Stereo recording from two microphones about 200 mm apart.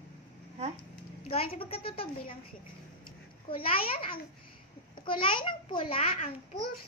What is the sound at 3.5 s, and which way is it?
Speech, 25° left (ahead or behind).